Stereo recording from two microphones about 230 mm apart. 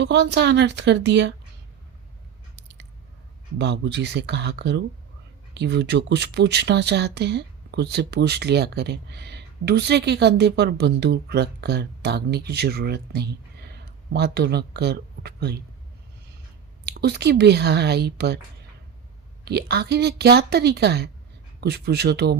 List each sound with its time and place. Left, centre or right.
0.0 s speech: right
3.6 s speech: right
16.8 s speech: right
19.5 s speech: right